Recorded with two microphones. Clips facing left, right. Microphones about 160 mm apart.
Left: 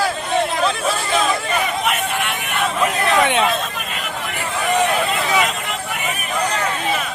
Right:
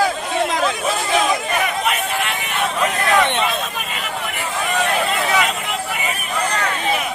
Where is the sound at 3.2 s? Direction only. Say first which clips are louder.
Left 2 dB; 5° left (ahead or behind).